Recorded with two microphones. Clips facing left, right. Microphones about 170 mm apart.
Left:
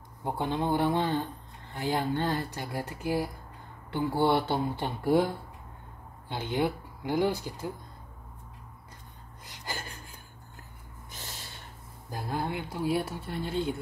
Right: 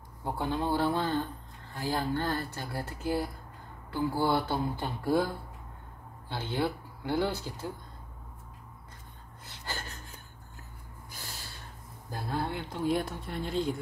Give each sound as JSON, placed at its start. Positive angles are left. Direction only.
{"t": 0.2, "sound": "speech", "side_deg": 20}
{"t": 3.9, "sound": "speech", "side_deg": 25}
{"t": 9.5, "sound": "gasp", "side_deg": 10}
{"t": 12.1, "sound": "speech", "side_deg": 20}